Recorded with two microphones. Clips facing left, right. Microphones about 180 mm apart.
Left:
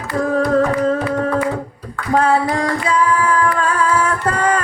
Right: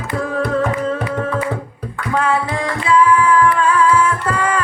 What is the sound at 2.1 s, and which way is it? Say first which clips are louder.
Music: left 3 dB; 40° left (ahead or behind).